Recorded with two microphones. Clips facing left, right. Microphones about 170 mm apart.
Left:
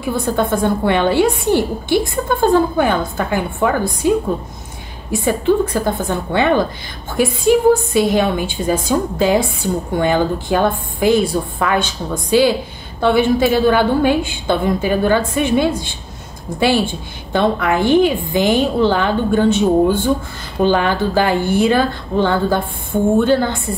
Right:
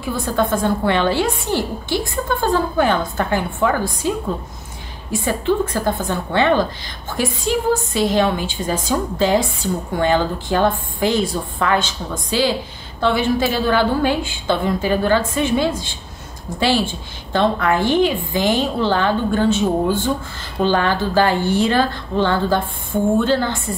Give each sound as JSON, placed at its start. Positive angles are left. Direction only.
{"t": 0.4, "sound": "a woman's voice", "side_deg": 15}
{"t": 5.2, "sound": "a woman's voice", "side_deg": 15}